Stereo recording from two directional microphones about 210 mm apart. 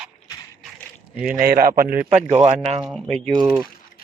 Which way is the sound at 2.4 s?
30° right (ahead or behind).